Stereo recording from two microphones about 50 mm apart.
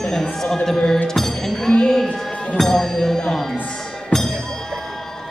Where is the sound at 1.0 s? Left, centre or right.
Centre.